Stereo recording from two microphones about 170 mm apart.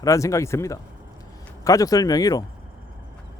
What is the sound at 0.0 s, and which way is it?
Speech, 20° left (ahead or behind).